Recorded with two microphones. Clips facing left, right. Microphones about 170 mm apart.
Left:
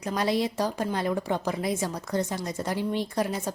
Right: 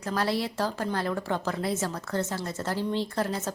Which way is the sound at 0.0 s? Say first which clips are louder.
Left 2 dB; 15° left (ahead or behind).